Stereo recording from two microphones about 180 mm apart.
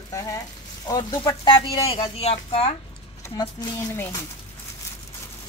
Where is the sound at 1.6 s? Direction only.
30° left (ahead or behind).